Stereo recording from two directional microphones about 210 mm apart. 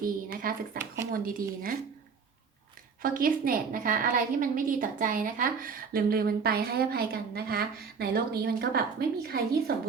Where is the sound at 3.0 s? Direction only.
40° right (ahead or behind).